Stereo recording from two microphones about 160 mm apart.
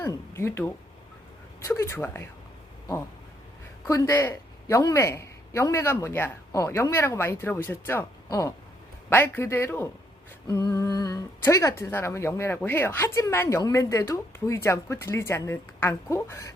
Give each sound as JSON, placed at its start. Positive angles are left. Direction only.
{"t": 0.0, "sound": "speech", "side_deg": 15}
{"t": 3.8, "sound": "speech", "side_deg": 20}